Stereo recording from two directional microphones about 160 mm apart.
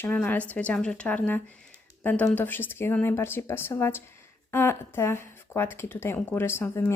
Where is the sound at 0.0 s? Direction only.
10° left (ahead or behind).